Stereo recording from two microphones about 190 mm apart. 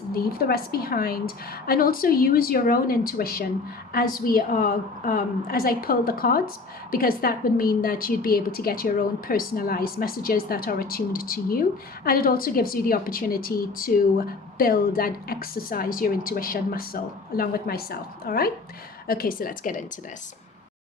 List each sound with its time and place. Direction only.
0.1 s a woman's voice: 50° left (ahead or behind)